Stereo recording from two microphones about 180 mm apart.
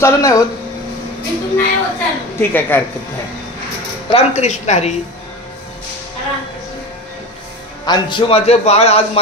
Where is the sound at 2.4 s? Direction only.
10° left (ahead or behind).